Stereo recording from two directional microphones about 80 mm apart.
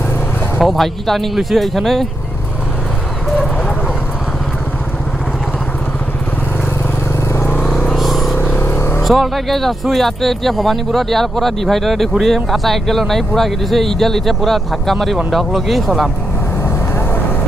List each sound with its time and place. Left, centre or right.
0.6 s speech: centre
7.9 s vehicle: centre
8.4 s vehicle: left
9.0 s speech: centre